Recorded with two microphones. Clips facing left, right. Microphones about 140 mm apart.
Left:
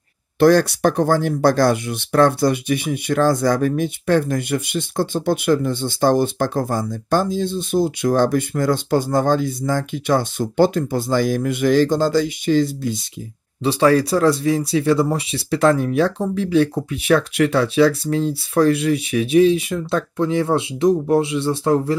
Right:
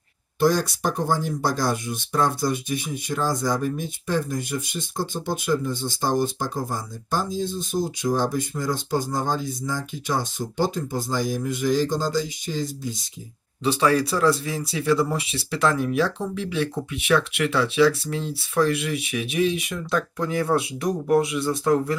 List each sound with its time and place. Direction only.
0.4 s speech: 70° left (ahead or behind)
13.7 s speech: 35° left (ahead or behind)